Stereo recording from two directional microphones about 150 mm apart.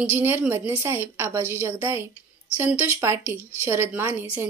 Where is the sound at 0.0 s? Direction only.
15° right (ahead or behind).